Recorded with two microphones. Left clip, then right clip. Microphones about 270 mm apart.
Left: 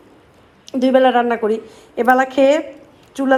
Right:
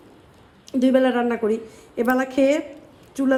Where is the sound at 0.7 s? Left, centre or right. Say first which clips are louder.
Left 6 dB; centre.